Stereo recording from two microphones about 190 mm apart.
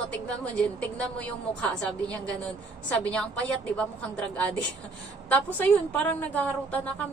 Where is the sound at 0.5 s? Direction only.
5° left (ahead or behind).